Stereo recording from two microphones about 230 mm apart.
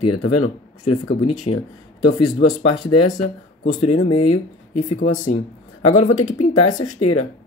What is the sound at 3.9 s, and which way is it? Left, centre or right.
Speech, left.